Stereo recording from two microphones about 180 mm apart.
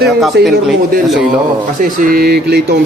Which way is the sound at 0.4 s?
70° right (ahead or behind).